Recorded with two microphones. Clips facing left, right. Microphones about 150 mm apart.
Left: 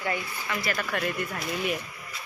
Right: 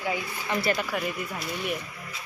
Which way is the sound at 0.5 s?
30° right (ahead or behind).